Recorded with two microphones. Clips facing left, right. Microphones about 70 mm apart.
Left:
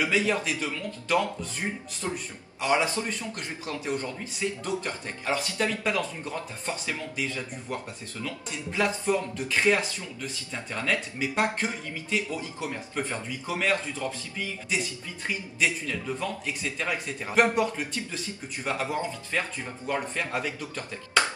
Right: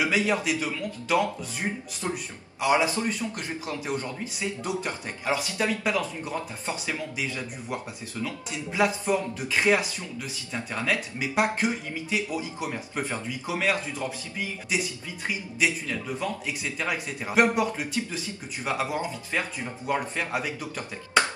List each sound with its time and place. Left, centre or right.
0.0 s speech: centre